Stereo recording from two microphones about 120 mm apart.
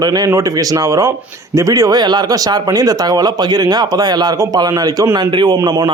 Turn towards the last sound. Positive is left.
turn(degrees=-30)  # may be behind; listen again after turning